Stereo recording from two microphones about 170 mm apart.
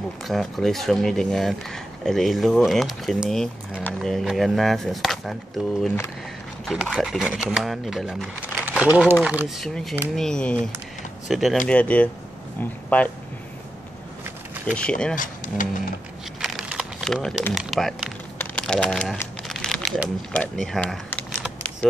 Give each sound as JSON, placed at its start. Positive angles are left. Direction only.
{"t": 0.2, "sound": "speech", "side_deg": 0}
{"t": 8.5, "sound": "crumpling", "side_deg": -10}
{"t": 9.2, "sound": "speech", "side_deg": -5}
{"t": 10.1, "sound": "a man's voice", "side_deg": 5}
{"t": 14.8, "sound": "speech", "side_deg": 5}
{"t": 15.1, "sound": "speech", "side_deg": 50}
{"t": 16.3, "sound": "a sound", "side_deg": 0}
{"t": 18.4, "sound": "crumpling", "side_deg": 5}
{"t": 20.0, "sound": "speech", "side_deg": 0}